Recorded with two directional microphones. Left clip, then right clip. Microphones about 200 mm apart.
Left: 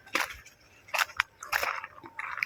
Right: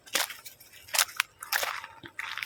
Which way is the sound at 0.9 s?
Centre (ahead or behind).